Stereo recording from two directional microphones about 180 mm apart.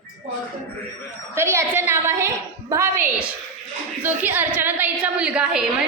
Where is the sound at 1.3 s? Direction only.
15° right (ahead or behind).